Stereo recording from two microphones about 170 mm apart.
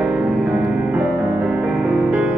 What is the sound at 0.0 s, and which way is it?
Music, 5° right (ahead or behind).